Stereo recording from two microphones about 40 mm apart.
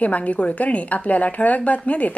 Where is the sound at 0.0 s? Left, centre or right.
Left.